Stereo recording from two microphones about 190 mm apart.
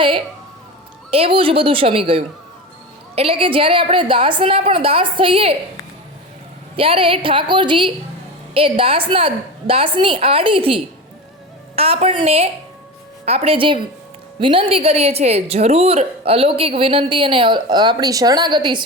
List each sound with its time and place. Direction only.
1.1 s a woman's voice: 30° right (ahead or behind)
6.7 s a woman's voice: 30° right (ahead or behind)